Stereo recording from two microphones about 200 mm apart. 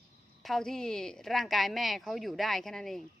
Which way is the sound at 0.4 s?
Centre (ahead or behind).